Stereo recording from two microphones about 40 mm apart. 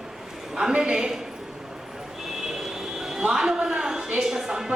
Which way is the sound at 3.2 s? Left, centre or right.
Centre.